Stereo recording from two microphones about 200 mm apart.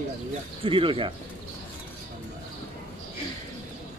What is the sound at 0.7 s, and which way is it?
Speech, 25° right (ahead or behind).